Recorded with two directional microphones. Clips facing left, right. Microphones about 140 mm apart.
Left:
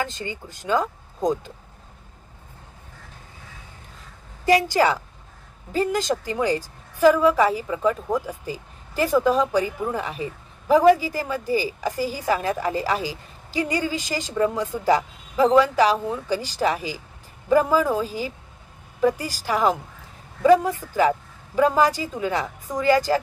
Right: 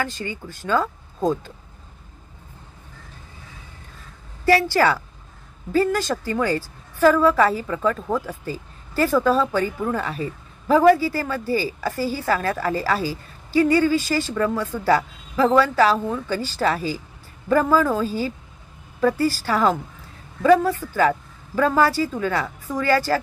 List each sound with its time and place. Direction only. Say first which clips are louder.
0.0 s a woman's voice: right 1 dB; 20° left (ahead or behind)
4.5 s a woman's voice: right 1 dB; 15° left (ahead or behind)